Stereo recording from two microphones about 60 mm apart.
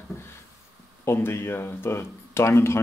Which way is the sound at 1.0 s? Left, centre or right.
Left.